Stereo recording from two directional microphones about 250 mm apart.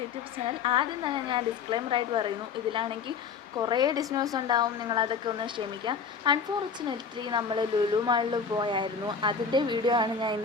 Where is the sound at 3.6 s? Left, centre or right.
Centre.